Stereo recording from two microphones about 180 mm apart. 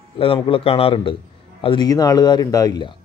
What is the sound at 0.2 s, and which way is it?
A man's voice, 30° left (ahead or behind).